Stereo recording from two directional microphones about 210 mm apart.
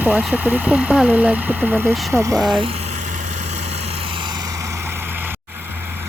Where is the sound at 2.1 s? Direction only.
15° right (ahead or behind).